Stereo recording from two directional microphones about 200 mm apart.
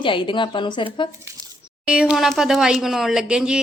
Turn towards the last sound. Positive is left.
turn(degrees=-5)  # may be behind; listen again after turning